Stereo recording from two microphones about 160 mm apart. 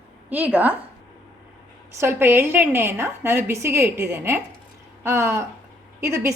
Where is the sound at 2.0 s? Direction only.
15° right (ahead or behind).